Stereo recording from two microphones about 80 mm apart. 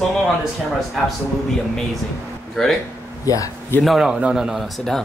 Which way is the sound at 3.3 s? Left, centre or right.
Left.